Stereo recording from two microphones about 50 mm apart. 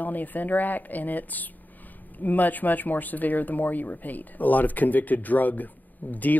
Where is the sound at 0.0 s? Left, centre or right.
Left.